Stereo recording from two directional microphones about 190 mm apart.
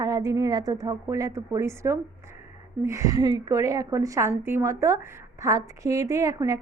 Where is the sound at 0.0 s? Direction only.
20° right (ahead or behind).